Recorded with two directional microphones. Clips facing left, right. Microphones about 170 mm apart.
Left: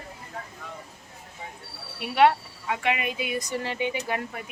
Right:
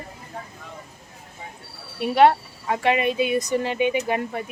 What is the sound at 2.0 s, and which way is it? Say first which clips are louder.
Speech: right 4 dB; 35° right (ahead or behind).